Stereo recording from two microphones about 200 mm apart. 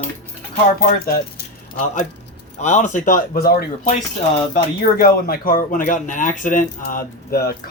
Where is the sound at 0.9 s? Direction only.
50° left (ahead or behind).